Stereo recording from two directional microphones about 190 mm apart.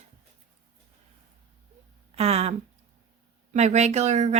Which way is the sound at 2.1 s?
35° right (ahead or behind).